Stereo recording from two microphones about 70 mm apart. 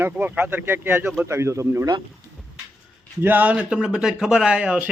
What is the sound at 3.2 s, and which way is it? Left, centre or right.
Speech, right.